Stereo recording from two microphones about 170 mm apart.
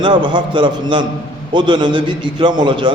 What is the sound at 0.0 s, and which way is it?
A man's voice, 30° right (ahead or behind).